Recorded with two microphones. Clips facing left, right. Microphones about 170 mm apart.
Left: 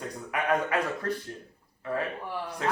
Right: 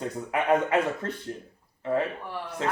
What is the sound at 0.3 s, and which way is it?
A man's voice, 25° right (ahead or behind).